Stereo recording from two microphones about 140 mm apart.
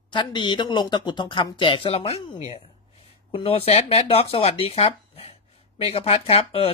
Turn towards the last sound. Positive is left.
turn(degrees=45)  # may be behind; listen again after turning